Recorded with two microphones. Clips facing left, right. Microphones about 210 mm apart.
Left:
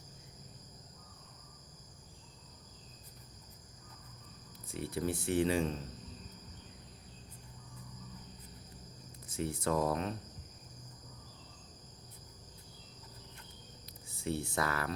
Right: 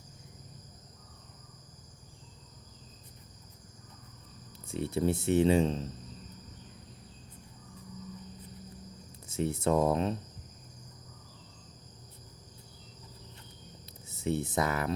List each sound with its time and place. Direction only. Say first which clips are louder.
4.6 s speech: right 6 dB; 25° right (ahead or behind)
9.2 s speech: right 5 dB; 25° right (ahead or behind)
14.1 s speech: right 5 dB; 20° right (ahead or behind)